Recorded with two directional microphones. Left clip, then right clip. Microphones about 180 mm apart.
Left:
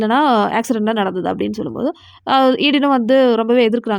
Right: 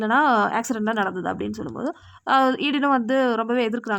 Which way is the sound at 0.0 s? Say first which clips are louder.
Left 4 dB; 25° left (ahead or behind).